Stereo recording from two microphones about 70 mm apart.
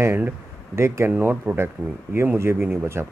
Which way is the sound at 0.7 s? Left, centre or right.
Right.